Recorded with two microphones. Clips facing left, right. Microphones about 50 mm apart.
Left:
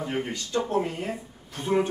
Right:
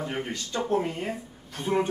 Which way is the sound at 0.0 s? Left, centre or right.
Centre.